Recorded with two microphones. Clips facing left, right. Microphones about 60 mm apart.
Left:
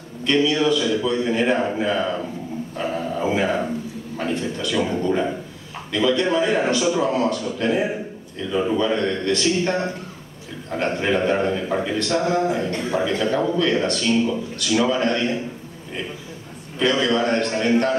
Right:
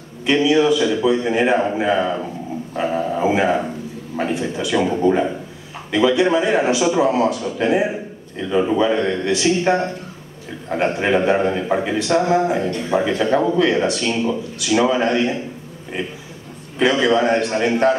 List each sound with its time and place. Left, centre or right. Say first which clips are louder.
0.2 s a man's voice: right 4 dB; centre
16.7 s a man's voice: right 4 dB; centre